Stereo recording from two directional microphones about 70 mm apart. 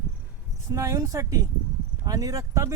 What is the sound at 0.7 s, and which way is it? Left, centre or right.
Speech, right.